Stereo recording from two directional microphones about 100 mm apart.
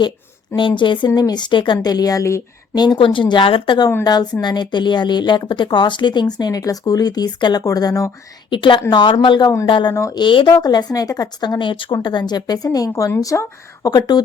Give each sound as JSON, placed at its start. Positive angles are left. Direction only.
{"t": 0.8, "sound": "a woman's voice", "side_deg": 50}
{"t": 2.7, "sound": "a woman's voice", "side_deg": 45}
{"t": 4.0, "sound": "a woman's voice", "side_deg": 45}
{"t": 8.4, "sound": "a woman's voice", "side_deg": 55}
{"t": 9.9, "sound": "speech", "side_deg": 30}
{"t": 10.2, "sound": "a woman's voice", "side_deg": 50}